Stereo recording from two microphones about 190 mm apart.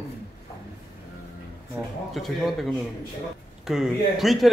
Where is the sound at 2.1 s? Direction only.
Centre (ahead or behind).